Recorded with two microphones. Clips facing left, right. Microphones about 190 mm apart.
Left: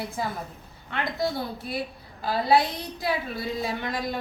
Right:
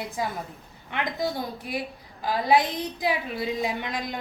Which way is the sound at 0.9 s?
15° right (ahead or behind).